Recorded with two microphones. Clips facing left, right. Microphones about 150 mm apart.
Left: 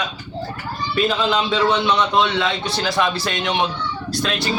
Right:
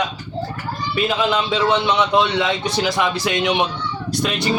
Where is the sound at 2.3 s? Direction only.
20° right (ahead or behind).